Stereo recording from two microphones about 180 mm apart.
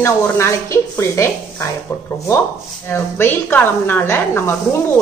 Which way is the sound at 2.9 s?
10° left (ahead or behind).